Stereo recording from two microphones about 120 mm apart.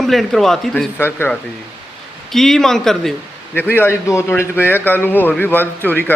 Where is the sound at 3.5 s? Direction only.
15° left (ahead or behind).